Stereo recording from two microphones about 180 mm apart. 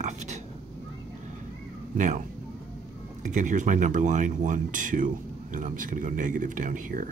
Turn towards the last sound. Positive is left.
turn(degrees=-50)  # may be behind; listen again after turning